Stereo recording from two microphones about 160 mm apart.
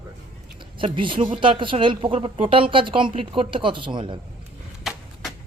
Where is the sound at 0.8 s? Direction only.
30° right (ahead or behind).